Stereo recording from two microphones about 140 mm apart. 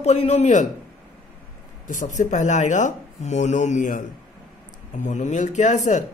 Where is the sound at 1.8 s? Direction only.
60° left (ahead or behind).